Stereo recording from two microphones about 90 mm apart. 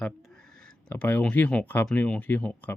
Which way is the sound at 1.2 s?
15° left (ahead or behind).